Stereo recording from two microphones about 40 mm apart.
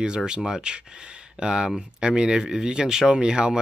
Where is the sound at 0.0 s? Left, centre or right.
Right.